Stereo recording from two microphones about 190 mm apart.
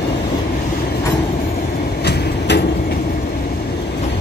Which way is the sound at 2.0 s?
60° left (ahead or behind).